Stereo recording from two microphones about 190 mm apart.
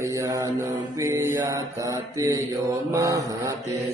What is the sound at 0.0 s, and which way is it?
Mantra, 15° right (ahead or behind).